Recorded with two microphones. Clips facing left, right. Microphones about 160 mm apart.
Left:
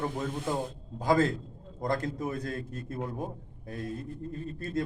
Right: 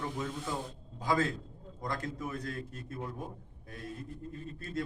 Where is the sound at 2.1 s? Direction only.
35° left (ahead or behind).